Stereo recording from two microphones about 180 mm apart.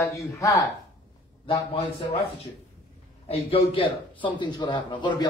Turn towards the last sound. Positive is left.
turn(degrees=25)  # may be behind; listen again after turning